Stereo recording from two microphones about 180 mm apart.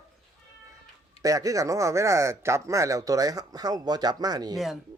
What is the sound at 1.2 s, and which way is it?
Speech, 20° right (ahead or behind).